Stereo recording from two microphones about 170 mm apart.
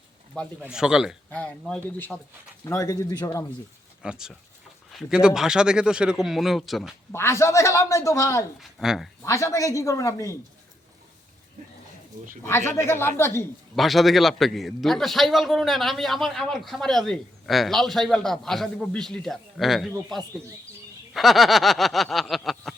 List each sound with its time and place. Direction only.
0.6 s a man's voice: 5° right (ahead or behind)
1.3 s a woman's voice: 5° left (ahead or behind)
2.6 s speech: 20° left (ahead or behind)
4.0 s a man's voice: 5° right (ahead or behind)
7.1 s a woman's voice: 15° left (ahead or behind)
8.5 s a man's voice: centre (ahead or behind)
9.2 s speech: 20° left (ahead or behind)
12.4 s a woman's voice: 15° left (ahead or behind)
13.7 s a man's voice: centre (ahead or behind)
21.1 s a man's voice: centre (ahead or behind)